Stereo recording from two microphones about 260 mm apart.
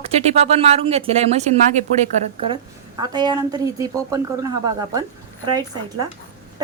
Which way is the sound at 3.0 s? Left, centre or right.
Centre.